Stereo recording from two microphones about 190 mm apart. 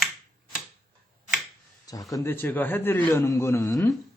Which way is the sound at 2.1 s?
10° left (ahead or behind).